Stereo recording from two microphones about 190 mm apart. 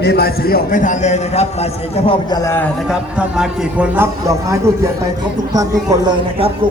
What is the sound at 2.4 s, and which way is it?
Speech, 10° left (ahead or behind).